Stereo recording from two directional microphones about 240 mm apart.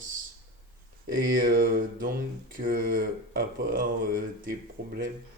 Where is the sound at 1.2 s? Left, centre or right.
Right.